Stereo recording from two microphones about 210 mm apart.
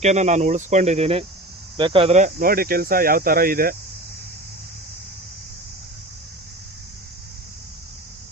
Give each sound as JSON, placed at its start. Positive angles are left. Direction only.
{"t": 0.0, "sound": "speech", "side_deg": -35}